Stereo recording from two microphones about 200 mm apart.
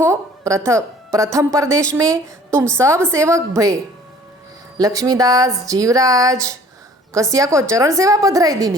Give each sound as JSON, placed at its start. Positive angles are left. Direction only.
{"t": 0.0, "sound": "speech", "side_deg": -15}
{"t": 4.8, "sound": "speech", "side_deg": -15}